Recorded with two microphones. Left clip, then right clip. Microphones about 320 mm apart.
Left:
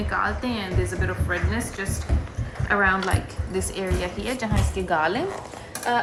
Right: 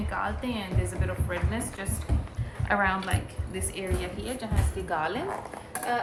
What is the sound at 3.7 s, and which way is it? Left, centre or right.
A woman's voice, centre.